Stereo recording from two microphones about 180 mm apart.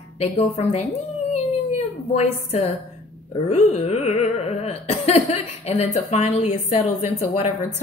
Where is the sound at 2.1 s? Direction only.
35° left (ahead or behind).